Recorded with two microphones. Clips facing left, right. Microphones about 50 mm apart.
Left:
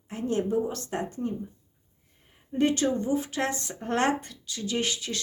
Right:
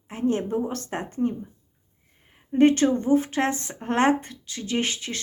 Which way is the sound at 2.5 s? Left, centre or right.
Right.